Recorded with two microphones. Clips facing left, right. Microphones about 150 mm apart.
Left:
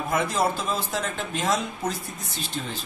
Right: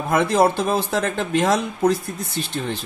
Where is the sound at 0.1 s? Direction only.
70° right (ahead or behind).